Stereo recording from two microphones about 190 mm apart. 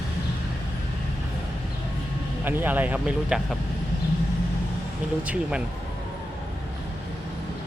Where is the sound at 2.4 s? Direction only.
10° right (ahead or behind).